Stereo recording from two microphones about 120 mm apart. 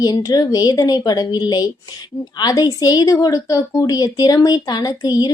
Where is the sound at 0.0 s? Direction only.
30° left (ahead or behind).